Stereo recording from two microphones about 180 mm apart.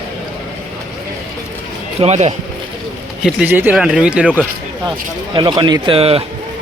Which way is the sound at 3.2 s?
10° right (ahead or behind).